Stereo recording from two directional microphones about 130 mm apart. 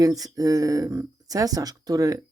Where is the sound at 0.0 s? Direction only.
25° right (ahead or behind).